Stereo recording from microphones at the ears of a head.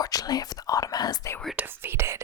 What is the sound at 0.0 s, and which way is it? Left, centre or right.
Whispering, left.